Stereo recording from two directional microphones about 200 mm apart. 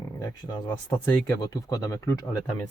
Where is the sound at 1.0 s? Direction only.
5° left (ahead or behind).